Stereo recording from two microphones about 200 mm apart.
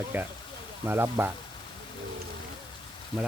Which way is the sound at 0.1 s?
10° right (ahead or behind).